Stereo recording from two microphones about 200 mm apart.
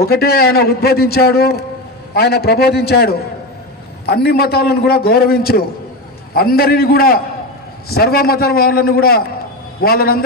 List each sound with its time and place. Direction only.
0.0 s a man's voice: 50° left (ahead or behind)